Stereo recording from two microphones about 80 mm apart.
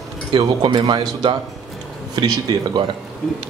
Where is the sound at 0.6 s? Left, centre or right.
Right.